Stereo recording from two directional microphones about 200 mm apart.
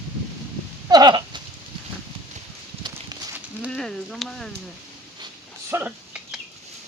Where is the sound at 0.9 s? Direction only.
20° right (ahead or behind).